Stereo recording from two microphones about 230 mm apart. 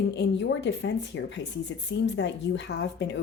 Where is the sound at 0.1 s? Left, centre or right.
Left.